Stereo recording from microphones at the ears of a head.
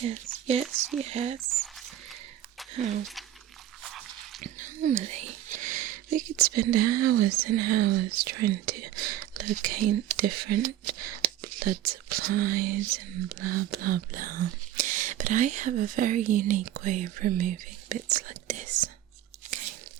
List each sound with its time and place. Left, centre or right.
0.0 s speech: right
2.7 s speech: right